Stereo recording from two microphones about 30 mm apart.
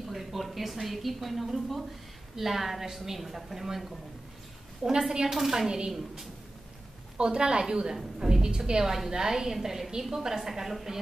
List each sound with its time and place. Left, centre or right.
0.1 s a woman's voice: centre
5.5 s a woman's voice: centre
7.2 s a woman's voice: right
8.8 s a woman's voice: centre